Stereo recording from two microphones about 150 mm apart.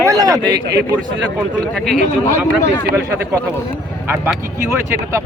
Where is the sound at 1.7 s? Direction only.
5° left (ahead or behind).